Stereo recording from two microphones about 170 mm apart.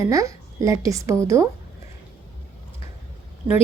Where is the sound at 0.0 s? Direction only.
20° right (ahead or behind).